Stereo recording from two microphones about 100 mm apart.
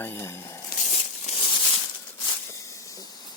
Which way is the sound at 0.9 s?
70° left (ahead or behind).